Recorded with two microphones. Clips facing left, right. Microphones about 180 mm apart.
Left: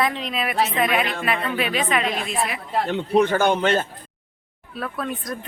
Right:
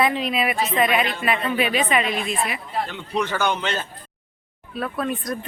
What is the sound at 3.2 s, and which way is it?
Speech, 50° left (ahead or behind).